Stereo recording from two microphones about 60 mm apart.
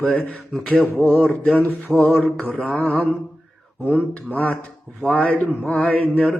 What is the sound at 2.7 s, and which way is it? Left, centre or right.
Speech, left.